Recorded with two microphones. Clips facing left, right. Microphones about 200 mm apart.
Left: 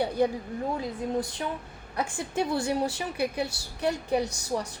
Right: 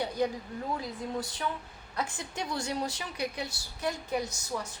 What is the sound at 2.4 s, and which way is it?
A woman's voice, 30° left (ahead or behind).